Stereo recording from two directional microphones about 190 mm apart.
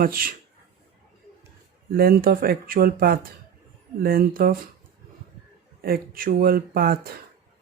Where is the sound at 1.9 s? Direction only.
50° right (ahead or behind).